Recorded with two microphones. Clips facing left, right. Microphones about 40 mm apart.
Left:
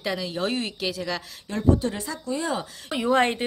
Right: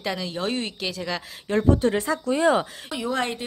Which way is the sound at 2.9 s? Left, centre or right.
Left.